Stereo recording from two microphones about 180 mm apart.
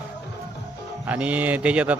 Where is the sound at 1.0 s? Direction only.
10° right (ahead or behind).